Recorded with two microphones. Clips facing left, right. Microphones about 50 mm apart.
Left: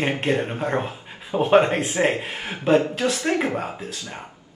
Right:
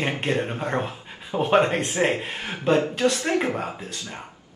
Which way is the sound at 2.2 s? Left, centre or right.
Centre.